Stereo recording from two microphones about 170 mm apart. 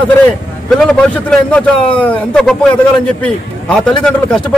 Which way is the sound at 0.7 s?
Centre (ahead or behind).